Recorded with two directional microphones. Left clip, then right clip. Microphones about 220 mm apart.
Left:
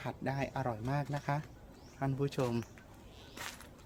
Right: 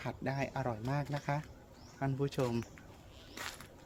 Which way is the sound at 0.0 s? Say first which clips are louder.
Even; 10° left (ahead or behind).